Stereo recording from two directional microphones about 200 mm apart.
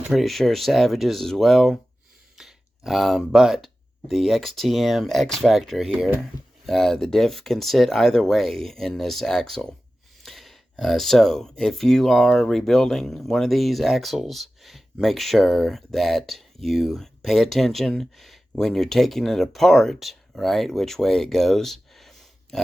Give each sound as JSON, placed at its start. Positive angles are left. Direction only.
{"t": 0.1, "sound": "speech", "side_deg": 0}